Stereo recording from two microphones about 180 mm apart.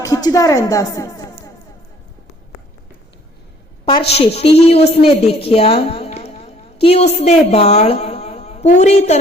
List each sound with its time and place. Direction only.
0.0 s a woman's voice: 20° left (ahead or behind)
3.8 s a woman's voice: 30° left (ahead or behind)